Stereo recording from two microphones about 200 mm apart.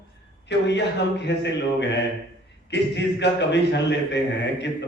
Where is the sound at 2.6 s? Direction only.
60° left (ahead or behind).